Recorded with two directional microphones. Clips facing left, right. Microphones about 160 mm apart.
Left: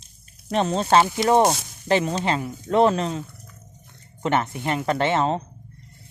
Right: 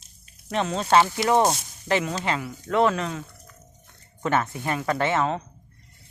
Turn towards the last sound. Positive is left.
turn(degrees=30)  # may be behind; listen again after turning